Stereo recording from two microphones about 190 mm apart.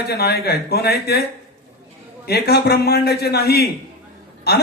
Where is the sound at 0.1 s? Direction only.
55° left (ahead or behind).